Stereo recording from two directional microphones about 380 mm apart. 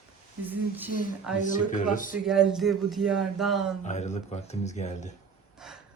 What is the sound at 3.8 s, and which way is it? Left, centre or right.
Speech, centre.